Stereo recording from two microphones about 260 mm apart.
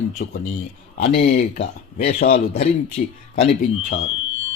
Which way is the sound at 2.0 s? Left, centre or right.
Left.